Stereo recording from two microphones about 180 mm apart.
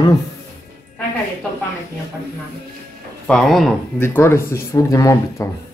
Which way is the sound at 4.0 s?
15° left (ahead or behind).